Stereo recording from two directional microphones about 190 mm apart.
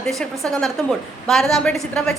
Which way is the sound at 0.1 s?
Centre (ahead or behind).